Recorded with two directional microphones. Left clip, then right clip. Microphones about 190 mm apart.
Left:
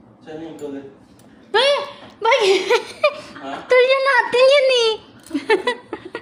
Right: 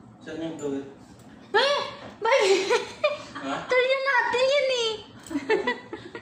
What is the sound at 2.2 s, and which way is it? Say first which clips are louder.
Laughter: left 6 dB; 50° left (ahead or behind).